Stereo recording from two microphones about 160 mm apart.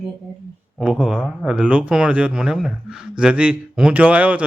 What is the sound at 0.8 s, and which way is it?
A woman's voice, 5° right (ahead or behind).